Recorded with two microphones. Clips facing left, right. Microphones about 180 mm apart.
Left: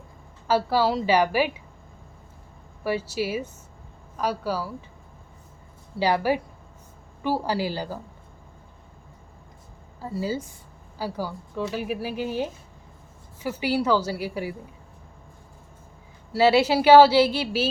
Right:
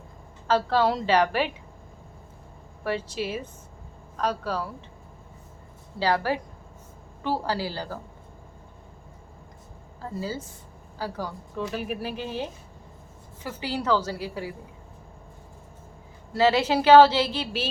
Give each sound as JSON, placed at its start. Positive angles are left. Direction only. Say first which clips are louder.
{"t": 0.4, "sound": "a woman's voice", "louder": "even", "side_deg": 10}
{"t": 2.8, "sound": "a woman's voice", "louder": "left 2 dB", "side_deg": 10}
{"t": 6.0, "sound": "a woman's voice", "louder": "left 2 dB", "side_deg": 15}
{"t": 10.0, "sound": "a woman's voice", "louder": "left 4 dB", "side_deg": 10}
{"t": 13.4, "sound": "a woman's voice", "louder": "left 5 dB", "side_deg": 10}
{"t": 16.3, "sound": "a woman's voice", "louder": "left 3 dB", "side_deg": 10}